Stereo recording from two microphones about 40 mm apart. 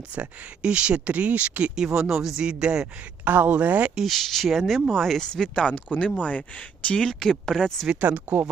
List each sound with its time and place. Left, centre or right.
0.1 s speech: right
1.7 s speech: centre
2.4 s speech: right
2.8 s speech: right
4.0 s speech: centre
5.5 s speech: left
6.2 s speech: left
6.9 s speech: centre
7.9 s speech: right